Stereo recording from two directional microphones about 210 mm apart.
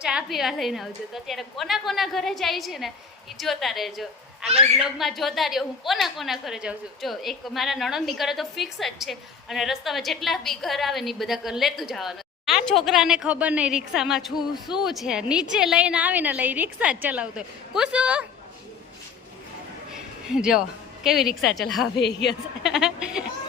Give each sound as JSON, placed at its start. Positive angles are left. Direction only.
{"t": 0.0, "sound": "a woman's voice", "side_deg": -5}
{"t": 19.9, "sound": "a sound", "side_deg": -5}
{"t": 21.5, "sound": "a woman's voice", "side_deg": 0}
{"t": 22.0, "sound": "a woman's voice", "side_deg": 55}
{"t": 22.6, "sound": "a woman's voice", "side_deg": 0}